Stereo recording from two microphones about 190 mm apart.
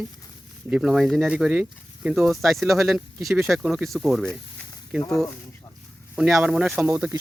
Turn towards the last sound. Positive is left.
turn(degrees=-10)  # may be behind; listen again after turning